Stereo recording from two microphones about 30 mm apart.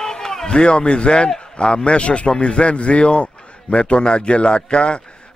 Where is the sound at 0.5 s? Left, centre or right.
Left.